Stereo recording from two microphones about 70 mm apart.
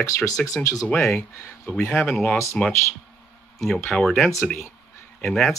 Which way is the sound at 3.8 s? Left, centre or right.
Centre.